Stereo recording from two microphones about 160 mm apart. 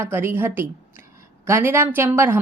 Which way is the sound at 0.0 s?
15° right (ahead or behind).